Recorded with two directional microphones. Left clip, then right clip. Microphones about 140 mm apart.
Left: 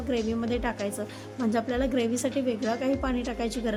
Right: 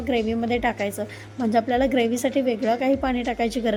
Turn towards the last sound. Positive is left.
turn(degrees=-10)  # may be behind; listen again after turning